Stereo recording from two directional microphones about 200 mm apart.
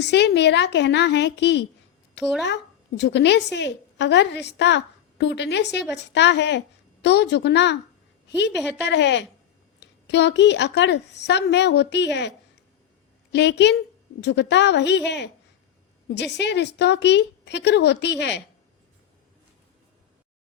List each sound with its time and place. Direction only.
0.0 s a woman's voice: 60° left (ahead or behind)
8.8 s a woman's voice: 60° left (ahead or behind)
13.3 s a woman's voice: 60° left (ahead or behind)